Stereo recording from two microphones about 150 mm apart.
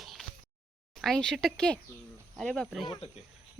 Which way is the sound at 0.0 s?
Centre (ahead or behind).